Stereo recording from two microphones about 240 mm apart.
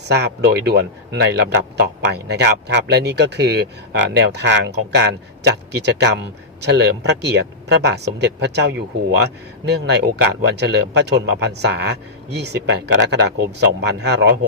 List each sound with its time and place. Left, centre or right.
0.0 s speech: right